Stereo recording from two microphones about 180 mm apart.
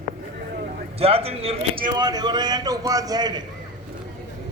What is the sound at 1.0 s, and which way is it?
Speech, 35° right (ahead or behind).